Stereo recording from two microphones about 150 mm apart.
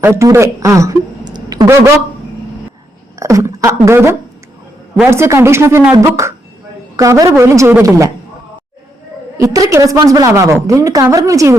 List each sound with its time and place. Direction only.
0.0 s speech: 20° right (ahead or behind)
3.2 s a woman's voice: 20° right (ahead or behind)
9.4 s a woman's voice: 25° right (ahead or behind)